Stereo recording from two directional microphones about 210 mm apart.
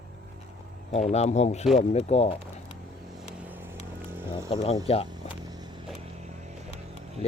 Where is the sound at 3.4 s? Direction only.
10° right (ahead or behind).